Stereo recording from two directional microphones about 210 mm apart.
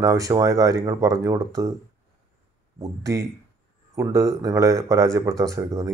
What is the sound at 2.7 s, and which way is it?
Speech, 15° right (ahead or behind).